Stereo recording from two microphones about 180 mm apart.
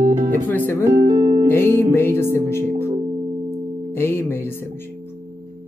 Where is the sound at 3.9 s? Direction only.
15° left (ahead or behind).